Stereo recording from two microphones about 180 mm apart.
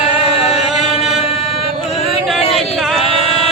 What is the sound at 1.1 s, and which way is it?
Chant, 30° left (ahead or behind).